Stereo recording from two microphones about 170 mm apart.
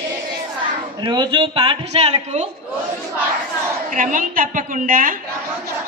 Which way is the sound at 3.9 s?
50° right (ahead or behind).